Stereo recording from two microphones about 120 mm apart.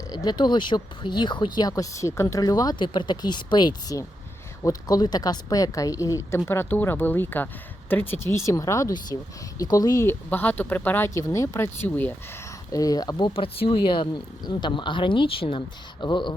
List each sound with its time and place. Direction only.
0.1 s a woman's voice: 35° left (ahead or behind)
10.2 s speech: 15° left (ahead or behind)
12.7 s speech: 30° left (ahead or behind)